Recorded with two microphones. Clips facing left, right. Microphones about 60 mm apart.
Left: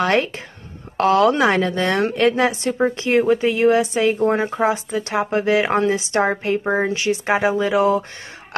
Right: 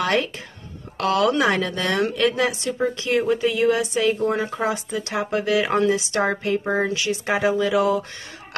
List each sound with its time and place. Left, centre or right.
0.0 s a woman's voice: left